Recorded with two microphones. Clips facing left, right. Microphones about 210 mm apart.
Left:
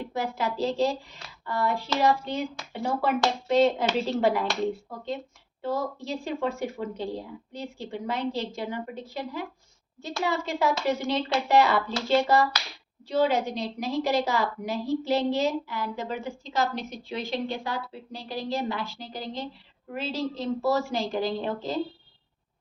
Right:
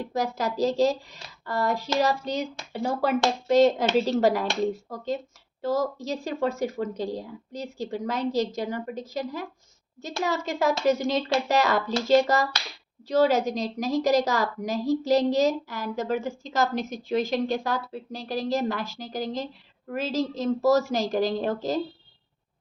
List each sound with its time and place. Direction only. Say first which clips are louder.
0.0 s a woman's voice: right 2 dB; 40° right (ahead or behind)